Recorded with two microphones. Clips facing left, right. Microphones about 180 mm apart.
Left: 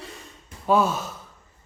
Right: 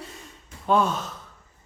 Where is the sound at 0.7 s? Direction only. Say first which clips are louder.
Left 1 dB; 5° left (ahead or behind).